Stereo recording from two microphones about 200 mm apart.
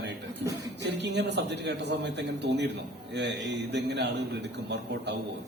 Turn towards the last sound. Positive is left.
turn(degrees=-60)  # may be behind; listen again after turning